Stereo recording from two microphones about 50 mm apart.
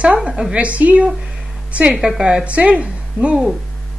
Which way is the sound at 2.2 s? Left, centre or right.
Right.